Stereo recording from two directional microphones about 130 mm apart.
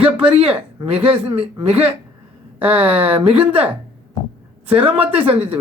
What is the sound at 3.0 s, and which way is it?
Speech, 45° right (ahead or behind).